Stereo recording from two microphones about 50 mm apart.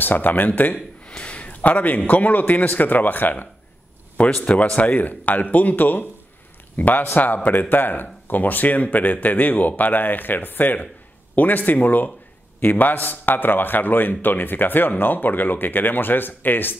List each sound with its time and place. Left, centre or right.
0.0 s a man's voice: left
0.7 s a sound: centre
2.0 s a man's voice: left
4.2 s a man's voice: left